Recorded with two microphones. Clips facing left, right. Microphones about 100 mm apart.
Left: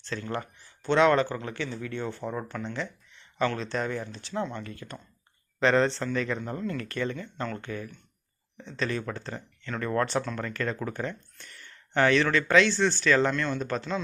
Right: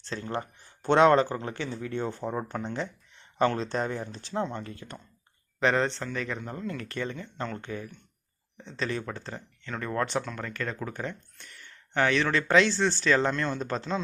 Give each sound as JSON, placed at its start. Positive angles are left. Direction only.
{"t": 0.0, "sound": "speech", "side_deg": -25}
{"t": 0.6, "sound": "speech", "side_deg": -50}
{"t": 2.2, "sound": "speech", "side_deg": -25}
{"t": 5.5, "sound": "speech", "side_deg": -15}
{"t": 6.7, "sound": "speech", "side_deg": -20}
{"t": 12.3, "sound": "speech", "side_deg": -25}